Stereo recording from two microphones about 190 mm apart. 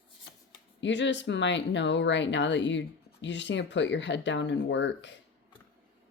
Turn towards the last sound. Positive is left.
turn(degrees=70)  # may be behind; listen again after turning